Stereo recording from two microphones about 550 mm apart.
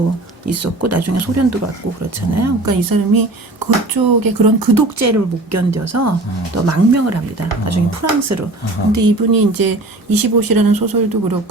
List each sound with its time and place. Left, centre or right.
0.4 s speech: right